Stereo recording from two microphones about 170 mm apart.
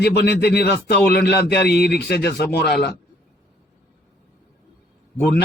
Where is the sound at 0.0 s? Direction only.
75° left (ahead or behind).